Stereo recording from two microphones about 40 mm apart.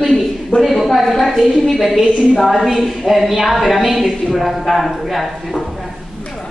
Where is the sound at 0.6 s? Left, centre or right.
Centre.